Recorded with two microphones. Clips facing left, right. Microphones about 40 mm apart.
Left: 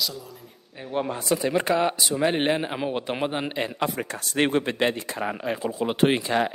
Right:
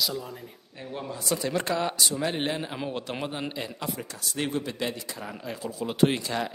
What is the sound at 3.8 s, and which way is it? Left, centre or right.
Speech, left.